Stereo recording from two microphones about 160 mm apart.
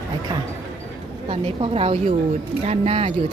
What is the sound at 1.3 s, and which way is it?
A woman's voice, 35° right (ahead or behind).